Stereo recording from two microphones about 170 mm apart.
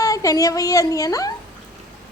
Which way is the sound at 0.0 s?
20° left (ahead or behind).